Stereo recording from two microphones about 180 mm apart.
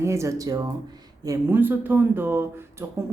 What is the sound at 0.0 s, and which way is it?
Speech, 15° right (ahead or behind).